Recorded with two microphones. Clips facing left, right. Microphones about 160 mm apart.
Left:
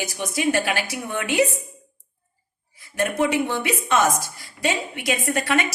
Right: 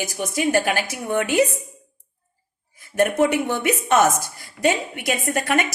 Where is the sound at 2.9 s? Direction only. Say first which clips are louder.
Right 3 dB; 50° right (ahead or behind).